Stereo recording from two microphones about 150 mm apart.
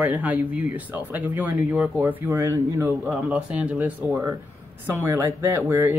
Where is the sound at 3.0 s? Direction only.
Centre (ahead or behind); by 5.9 s 20° right (ahead or behind).